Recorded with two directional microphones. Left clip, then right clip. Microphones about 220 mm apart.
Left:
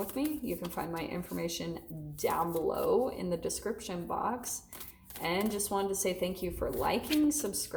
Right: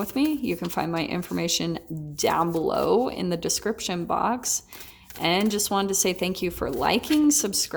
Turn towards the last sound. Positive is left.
turn(degrees=-45)  # may be behind; listen again after turning